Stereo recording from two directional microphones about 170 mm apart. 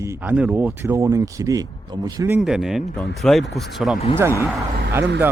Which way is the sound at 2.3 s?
5° right (ahead or behind).